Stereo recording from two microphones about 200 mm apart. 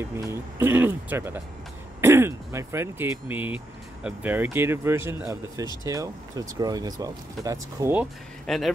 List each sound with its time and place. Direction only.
0.0 s speech: 10° right (ahead or behind)
7.8 s speech: 10° right (ahead or behind)